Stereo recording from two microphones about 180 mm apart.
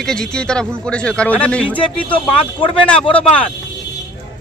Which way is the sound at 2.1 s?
30° left (ahead or behind).